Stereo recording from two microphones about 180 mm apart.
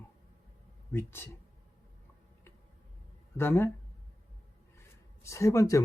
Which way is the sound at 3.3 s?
10° left (ahead or behind).